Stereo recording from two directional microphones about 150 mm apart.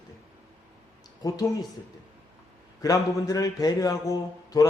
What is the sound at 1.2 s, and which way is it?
Speech, 25° left (ahead or behind).